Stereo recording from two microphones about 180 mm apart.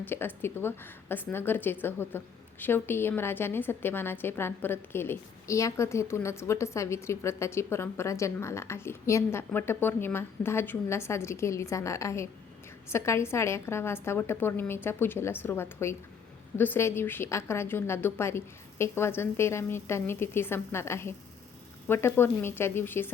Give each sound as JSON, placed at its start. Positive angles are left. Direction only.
{"t": 0.0, "sound": "a woman's voice", "side_deg": 10}